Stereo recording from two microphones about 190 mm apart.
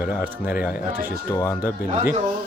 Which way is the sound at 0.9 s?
50° right (ahead or behind).